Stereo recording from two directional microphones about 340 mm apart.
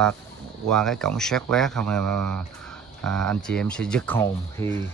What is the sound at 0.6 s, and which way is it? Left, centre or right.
Speech, centre.